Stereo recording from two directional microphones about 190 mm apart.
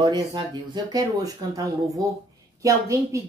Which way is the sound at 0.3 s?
25° right (ahead or behind).